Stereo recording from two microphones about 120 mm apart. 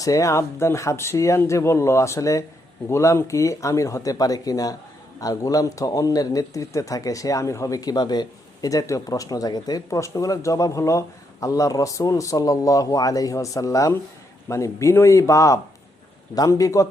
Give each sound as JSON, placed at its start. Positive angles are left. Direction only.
{"t": 0.0, "sound": "a man's voice", "side_deg": 30}